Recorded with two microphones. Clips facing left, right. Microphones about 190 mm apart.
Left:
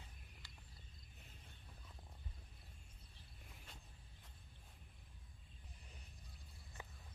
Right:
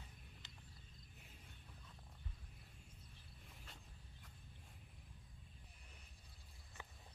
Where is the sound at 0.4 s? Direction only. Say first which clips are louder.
Right 1 dB; 20° right (ahead or behind).